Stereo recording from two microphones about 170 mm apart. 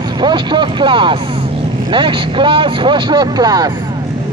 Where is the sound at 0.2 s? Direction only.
25° right (ahead or behind).